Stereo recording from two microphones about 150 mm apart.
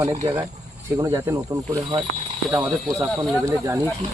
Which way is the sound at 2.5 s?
20° right (ahead or behind).